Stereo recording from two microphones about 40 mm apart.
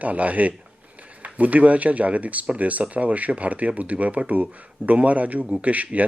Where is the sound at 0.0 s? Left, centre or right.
Right.